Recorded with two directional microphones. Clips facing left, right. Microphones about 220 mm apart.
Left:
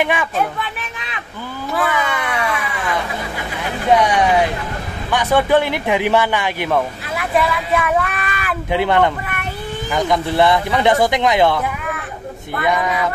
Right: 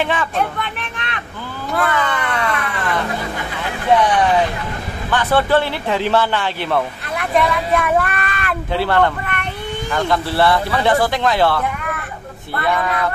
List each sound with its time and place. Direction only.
0.0 s a sound: 10° left (ahead or behind)
4.0 s speech: 10° left (ahead or behind)
8.7 s speech: 15° left (ahead or behind)
12.6 s speech: 15° left (ahead or behind)